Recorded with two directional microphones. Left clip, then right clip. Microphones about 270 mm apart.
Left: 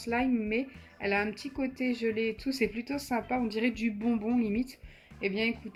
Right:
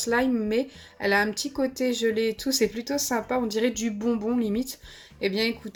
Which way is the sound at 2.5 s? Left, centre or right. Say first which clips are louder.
Right 6 dB; right.